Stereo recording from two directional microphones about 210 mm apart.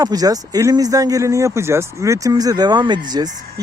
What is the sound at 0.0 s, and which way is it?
Speech, 15° right (ahead or behind).